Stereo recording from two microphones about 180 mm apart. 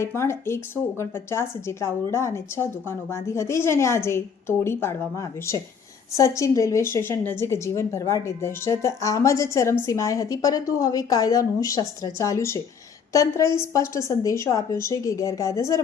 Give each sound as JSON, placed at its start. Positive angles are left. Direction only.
{"t": 0.0, "sound": "speech", "side_deg": 15}